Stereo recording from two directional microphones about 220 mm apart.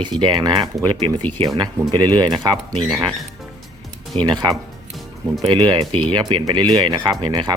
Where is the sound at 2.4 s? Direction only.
20° right (ahead or behind).